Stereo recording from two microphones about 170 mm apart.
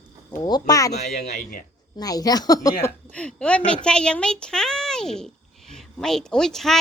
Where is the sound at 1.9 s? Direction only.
20° left (ahead or behind).